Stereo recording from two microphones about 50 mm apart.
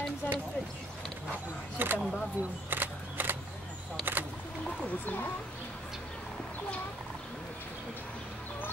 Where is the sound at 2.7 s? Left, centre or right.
Right.